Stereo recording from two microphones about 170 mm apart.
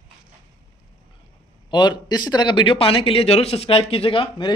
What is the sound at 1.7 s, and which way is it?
Speech, 25° left (ahead or behind).